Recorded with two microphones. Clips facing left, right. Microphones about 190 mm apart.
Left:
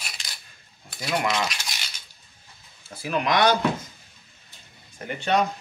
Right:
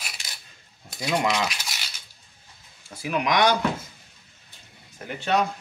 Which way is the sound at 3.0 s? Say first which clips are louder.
Even; 15° right (ahead or behind).